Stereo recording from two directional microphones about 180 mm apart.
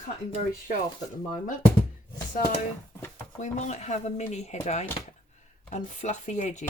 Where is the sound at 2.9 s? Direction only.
10° left (ahead or behind).